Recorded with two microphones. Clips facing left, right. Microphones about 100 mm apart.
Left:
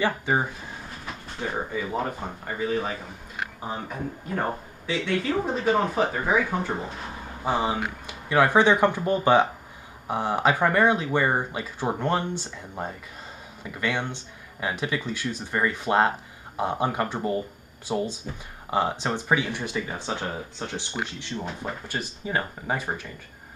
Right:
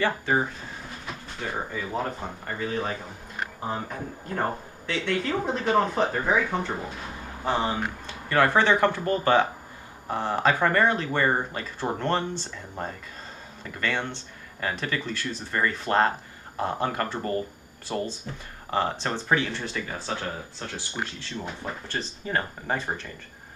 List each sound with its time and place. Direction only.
0.0 s speech: 10° left (ahead or behind)
4.8 s speech: 5° left (ahead or behind)